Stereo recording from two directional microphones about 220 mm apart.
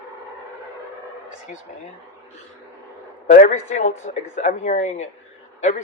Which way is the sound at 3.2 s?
35° left (ahead or behind).